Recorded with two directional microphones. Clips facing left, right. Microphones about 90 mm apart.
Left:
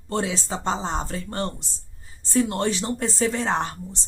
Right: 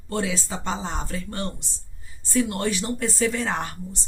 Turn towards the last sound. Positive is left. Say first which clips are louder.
# left 3 dB
turn(degrees=30)  # may be behind; listen again after turning